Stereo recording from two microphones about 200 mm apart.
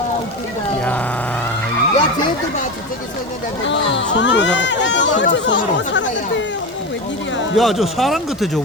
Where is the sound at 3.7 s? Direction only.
65° left (ahead or behind).